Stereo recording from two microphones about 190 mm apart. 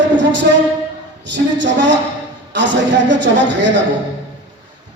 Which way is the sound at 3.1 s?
70° right (ahead or behind).